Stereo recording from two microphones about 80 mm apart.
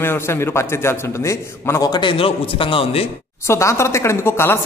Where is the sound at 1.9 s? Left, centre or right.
Left.